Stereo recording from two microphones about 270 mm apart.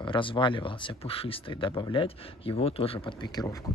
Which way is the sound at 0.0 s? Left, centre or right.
Centre.